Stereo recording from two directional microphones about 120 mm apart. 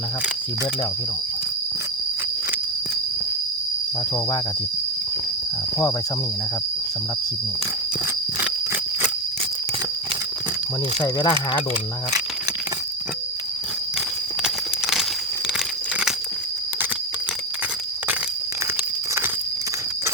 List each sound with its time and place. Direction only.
11.0 s speech: 35° left (ahead or behind)
14.4 s a sound: 5° right (ahead or behind)
15.5 s crumpling: 5° right (ahead or behind)